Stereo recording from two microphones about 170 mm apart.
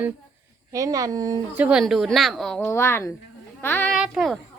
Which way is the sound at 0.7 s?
20° right (ahead or behind).